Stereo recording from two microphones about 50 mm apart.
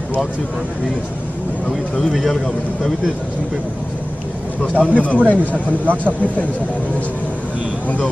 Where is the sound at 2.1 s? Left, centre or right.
Centre.